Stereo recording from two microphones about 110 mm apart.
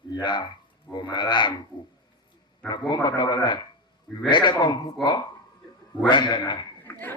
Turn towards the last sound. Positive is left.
turn(degrees=20)  # may be behind; listen again after turning